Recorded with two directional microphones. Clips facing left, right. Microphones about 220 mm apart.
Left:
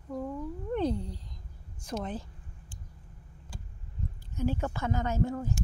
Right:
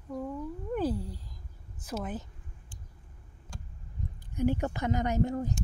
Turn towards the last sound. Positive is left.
turn(degrees=-20)  # may be behind; listen again after turning